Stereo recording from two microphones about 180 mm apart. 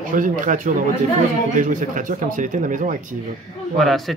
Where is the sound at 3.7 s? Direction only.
Centre (ahead or behind).